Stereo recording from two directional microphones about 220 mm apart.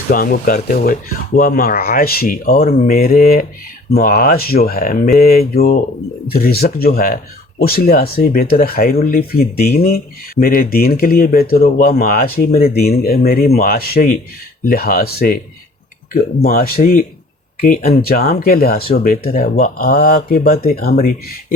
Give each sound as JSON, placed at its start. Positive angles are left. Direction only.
{"t": 0.1, "sound": "speech", "side_deg": 40}
{"t": 16.4, "sound": "speech", "side_deg": 40}